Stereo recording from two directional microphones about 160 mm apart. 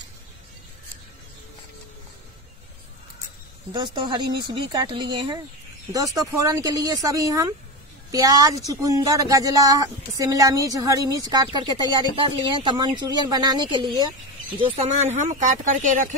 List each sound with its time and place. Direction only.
3.7 s speech: 30° right (ahead or behind)
14.6 s speech: 45° right (ahead or behind)